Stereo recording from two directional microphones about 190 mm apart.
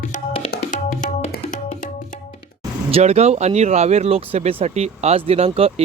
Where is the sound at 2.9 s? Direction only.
35° right (ahead or behind).